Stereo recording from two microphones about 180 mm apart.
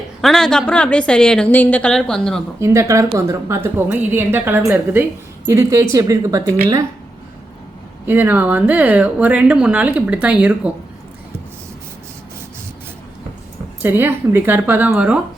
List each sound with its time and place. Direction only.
0.2 s a woman's voice: centre (ahead or behind)
2.6 s speech: 15° right (ahead or behind)
8.0 s speech: 10° right (ahead or behind)
13.8 s speech: 10° right (ahead or behind)